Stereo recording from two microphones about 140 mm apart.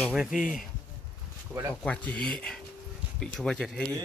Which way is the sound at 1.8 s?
10° left (ahead or behind).